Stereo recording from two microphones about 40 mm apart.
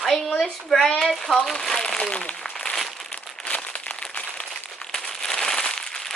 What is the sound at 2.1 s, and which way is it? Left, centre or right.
Speech, left.